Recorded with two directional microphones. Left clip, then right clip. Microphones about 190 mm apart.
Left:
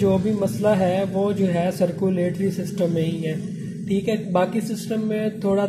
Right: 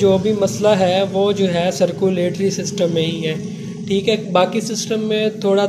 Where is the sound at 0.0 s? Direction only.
5° right (ahead or behind).